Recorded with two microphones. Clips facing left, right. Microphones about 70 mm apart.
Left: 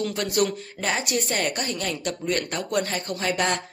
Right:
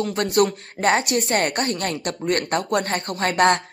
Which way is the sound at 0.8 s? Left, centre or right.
Right.